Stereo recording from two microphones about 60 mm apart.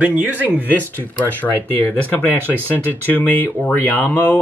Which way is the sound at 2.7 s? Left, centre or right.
Left.